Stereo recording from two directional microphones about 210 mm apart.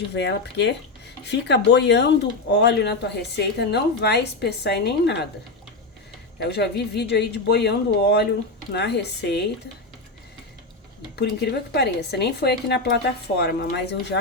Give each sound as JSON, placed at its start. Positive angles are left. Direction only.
{"t": 0.1, "sound": "speech", "side_deg": 55}
{"t": 6.4, "sound": "speech", "side_deg": 55}
{"t": 11.2, "sound": "speech", "side_deg": 50}